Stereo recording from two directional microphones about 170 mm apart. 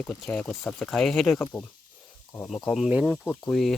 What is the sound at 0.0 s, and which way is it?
Speech, 5° left (ahead or behind).